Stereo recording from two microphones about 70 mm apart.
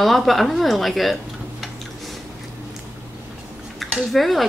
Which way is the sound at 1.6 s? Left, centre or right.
Centre.